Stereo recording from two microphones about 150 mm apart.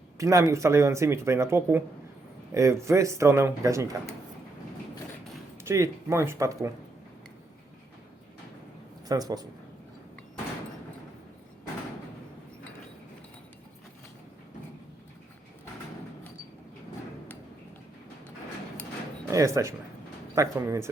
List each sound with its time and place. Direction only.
0.2 s speech: 20° right (ahead or behind)
5.6 s speech: 20° right (ahead or behind)
9.0 s speech: 25° right (ahead or behind)
19.3 s speech: 20° right (ahead or behind)